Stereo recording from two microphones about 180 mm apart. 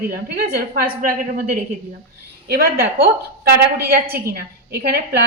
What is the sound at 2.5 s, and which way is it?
A woman's voice, 60° right (ahead or behind).